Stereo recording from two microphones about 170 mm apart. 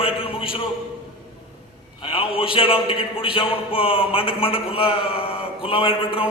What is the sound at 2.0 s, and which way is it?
A man's voice, 30° left (ahead or behind).